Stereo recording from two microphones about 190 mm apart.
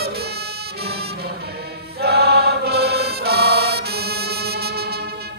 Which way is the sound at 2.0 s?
60° right (ahead or behind).